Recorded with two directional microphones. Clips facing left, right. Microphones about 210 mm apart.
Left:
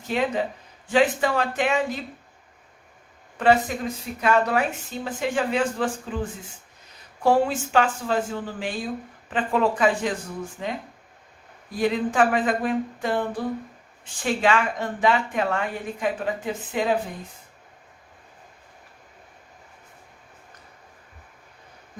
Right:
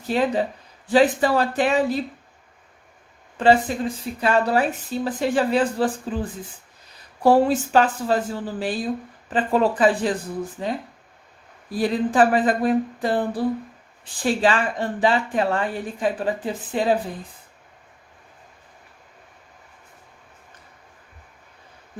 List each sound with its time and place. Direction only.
0.1 s speech: 35° right (ahead or behind)
3.3 s speech: 30° right (ahead or behind)
7.2 s speech: 35° right (ahead or behind)